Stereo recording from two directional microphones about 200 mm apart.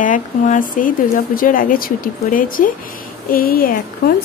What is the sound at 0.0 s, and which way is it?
Speech, 40° left (ahead or behind).